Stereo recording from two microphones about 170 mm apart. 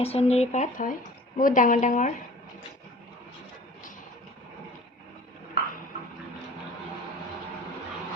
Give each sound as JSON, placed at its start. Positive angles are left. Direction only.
{"t": 0.0, "sound": "a woman's voice", "side_deg": 35}